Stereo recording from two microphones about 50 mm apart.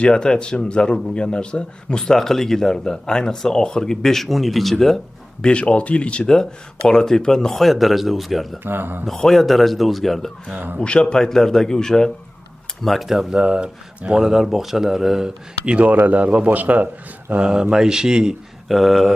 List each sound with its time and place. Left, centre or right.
0.0 s speech: centre
5.4 s speech: left; by 8.5 s centre
8.5 s speech: right
9.1 s a man's voice: centre
10.5 s a man's voice: right
10.8 s speech: left
12.8 s a man's voice: centre
13.1 s speech: centre
15.6 s speech: right
15.9 s a man's voice: right
17.4 s speech: centre
18.7 s a man's voice: centre